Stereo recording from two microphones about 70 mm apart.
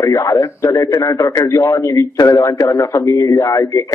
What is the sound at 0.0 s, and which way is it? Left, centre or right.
Speech, left.